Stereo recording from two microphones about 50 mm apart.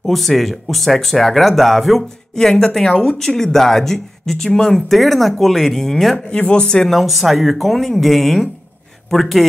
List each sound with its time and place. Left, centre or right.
0.0 s speech: centre
2.3 s speech: centre
6.1 s speech: left
7.0 s speech: centre